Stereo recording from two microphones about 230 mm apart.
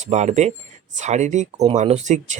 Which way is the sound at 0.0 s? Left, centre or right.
Right.